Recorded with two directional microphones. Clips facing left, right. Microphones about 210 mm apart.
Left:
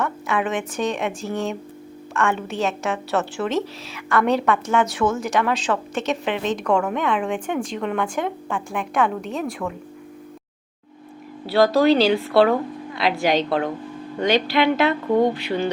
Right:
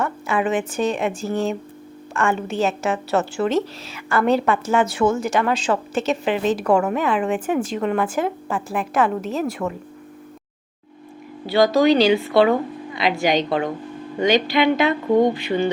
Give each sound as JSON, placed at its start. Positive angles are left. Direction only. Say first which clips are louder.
{"t": 0.0, "sound": "a woman's voice", "louder": "right 2 dB", "side_deg": 0}
{"t": 11.4, "sound": "a woman's voice", "louder": "right 1 dB", "side_deg": 0}